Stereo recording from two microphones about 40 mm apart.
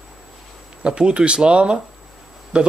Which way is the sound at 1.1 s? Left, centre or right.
Right.